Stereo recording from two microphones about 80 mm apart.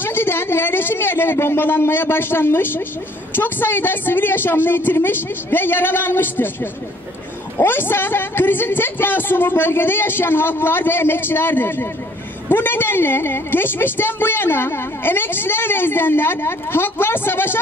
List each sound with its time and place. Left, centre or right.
0.0 s a woman's voice: left